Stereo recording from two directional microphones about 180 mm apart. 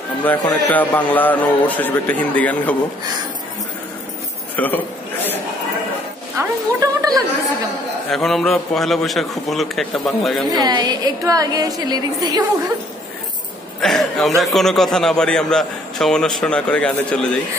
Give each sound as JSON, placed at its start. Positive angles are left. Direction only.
{"t": 0.2, "sound": "a man's voice", "side_deg": 10}
{"t": 4.6, "sound": "a sound", "side_deg": 10}
{"t": 6.3, "sound": "a woman's voice", "side_deg": -20}
{"t": 8.1, "sound": "a man's voice", "side_deg": 0}
{"t": 10.5, "sound": "a woman's voice", "side_deg": -25}
{"t": 13.7, "sound": "a man's voice", "side_deg": 0}